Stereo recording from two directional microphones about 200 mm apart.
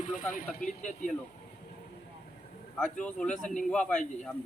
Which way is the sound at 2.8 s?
5° left (ahead or behind).